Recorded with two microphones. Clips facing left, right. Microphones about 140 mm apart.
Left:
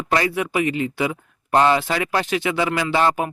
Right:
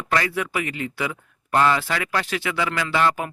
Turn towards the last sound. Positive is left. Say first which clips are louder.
# left 3 dB
turn(degrees=30)  # may be behind; listen again after turning